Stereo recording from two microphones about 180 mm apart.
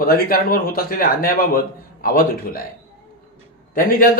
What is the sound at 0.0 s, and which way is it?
Speech, 55° left (ahead or behind).